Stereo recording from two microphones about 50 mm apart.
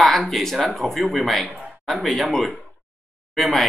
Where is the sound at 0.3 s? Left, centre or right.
Centre.